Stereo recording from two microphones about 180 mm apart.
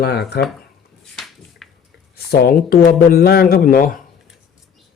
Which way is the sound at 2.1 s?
60° left (ahead or behind).